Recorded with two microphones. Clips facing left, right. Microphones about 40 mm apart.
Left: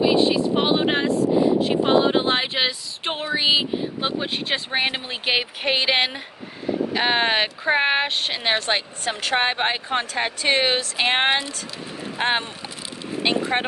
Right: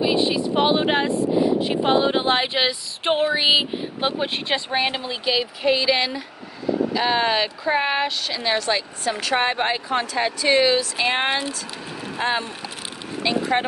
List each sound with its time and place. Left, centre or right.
0.0 s vehicle: centre
1.6 s speech: centre
3.0 s a sound: centre
3.3 s speech: centre
4.6 s speech: left
5.1 s speech: left